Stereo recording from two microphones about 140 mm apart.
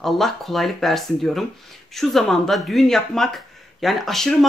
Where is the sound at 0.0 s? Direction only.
Centre (ahead or behind).